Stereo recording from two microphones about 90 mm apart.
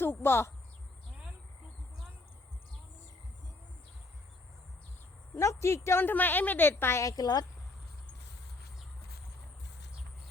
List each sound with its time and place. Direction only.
0.0 s a woman's voice: 25° left (ahead or behind)
5.3 s a woman's voice: 35° left (ahead or behind)
7.0 s a woman's voice: 40° left (ahead or behind)